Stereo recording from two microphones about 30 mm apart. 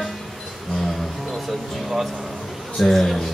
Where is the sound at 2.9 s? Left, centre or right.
Centre.